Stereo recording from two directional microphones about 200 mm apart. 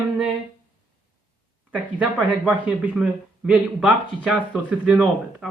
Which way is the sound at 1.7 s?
5° right (ahead or behind).